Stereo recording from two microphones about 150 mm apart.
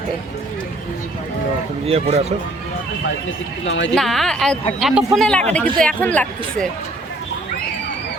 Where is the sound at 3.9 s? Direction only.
Centre (ahead or behind).